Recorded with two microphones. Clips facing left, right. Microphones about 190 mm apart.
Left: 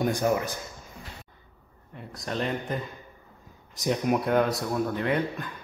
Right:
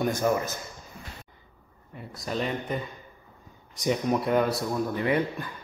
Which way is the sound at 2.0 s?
Centre (ahead or behind).